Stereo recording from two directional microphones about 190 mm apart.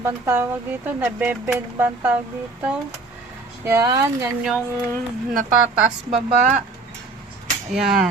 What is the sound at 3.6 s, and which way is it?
Speech, 15° right (ahead or behind).